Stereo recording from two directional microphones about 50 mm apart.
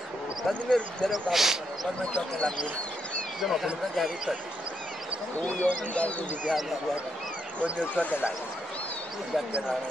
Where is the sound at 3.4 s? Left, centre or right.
Centre.